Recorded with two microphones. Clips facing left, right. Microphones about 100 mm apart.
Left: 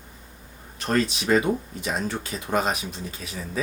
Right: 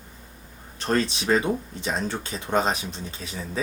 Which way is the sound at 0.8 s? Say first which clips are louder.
Even; 30° right (ahead or behind).